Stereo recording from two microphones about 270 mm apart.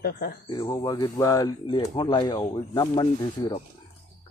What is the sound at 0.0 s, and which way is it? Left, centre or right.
Speech, left.